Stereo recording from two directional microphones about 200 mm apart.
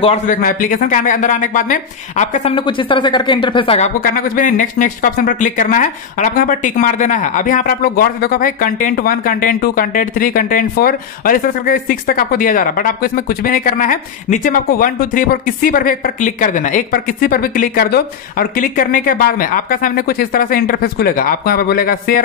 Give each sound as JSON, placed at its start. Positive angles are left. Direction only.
{"t": 0.0, "sound": "a woman's voice", "side_deg": 30}
{"t": 0.4, "sound": "a woman's voice", "side_deg": 45}
{"t": 4.0, "sound": "speech", "side_deg": 45}